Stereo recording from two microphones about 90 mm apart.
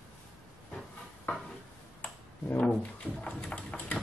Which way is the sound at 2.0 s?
15° left (ahead or behind).